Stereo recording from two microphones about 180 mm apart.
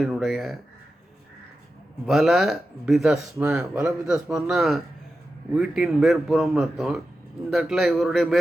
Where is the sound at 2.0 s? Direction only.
Centre (ahead or behind).